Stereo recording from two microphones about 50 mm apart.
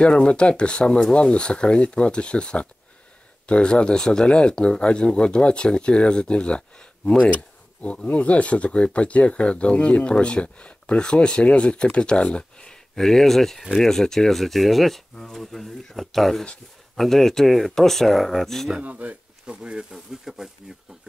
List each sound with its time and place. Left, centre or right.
0.0 s speech: centre
7.8 s speech: left
12.9 s speech: centre
18.8 s speech: right
19.4 s speech: centre
19.9 s speech: centre